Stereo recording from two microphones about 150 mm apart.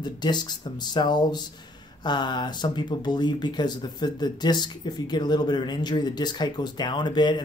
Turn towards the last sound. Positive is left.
turn(degrees=30)  # may be behind; listen again after turning